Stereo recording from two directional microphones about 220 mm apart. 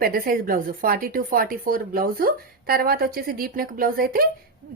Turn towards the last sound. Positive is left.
turn(degrees=-40)  # may be behind; listen again after turning